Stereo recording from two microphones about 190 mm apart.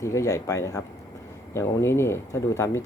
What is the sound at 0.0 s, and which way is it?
Speech, 15° left (ahead or behind).